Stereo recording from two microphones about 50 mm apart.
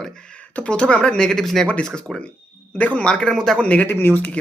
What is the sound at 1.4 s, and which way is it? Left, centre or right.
Speech, centre.